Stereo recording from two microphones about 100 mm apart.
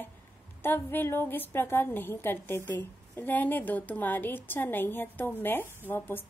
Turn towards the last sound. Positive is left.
turn(degrees=20)  # may be behind; listen again after turning